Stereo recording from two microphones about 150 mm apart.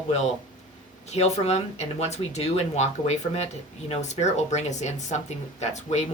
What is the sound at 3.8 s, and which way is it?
A woman's voice, 50° left (ahead or behind).